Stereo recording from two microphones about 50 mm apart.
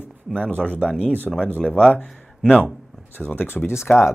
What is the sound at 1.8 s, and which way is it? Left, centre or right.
Speech, left.